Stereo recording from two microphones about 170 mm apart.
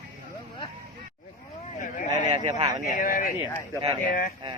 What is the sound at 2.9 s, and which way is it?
Speech, 55° left (ahead or behind).